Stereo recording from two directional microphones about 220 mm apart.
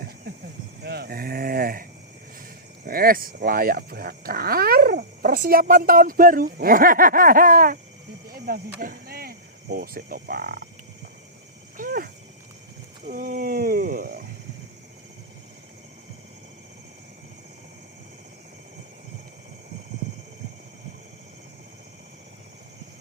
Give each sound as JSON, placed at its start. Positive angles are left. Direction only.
{"t": 0.3, "sound": "a sound", "side_deg": -45}
{"t": 0.8, "sound": "speech", "side_deg": -45}
{"t": 8.3, "sound": "snake", "side_deg": -40}
{"t": 8.8, "sound": "speech", "side_deg": -40}
{"t": 11.8, "sound": "speech", "side_deg": -40}